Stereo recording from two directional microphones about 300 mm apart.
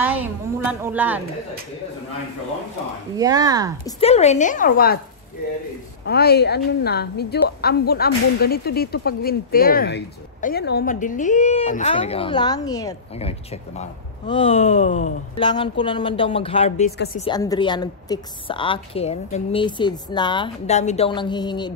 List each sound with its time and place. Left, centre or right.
0.0 s a woman's voice: centre
3.2 s speech: centre
3.8 s a woman's voice: left
6.0 s a woman's voice: left; by 21.7 s centre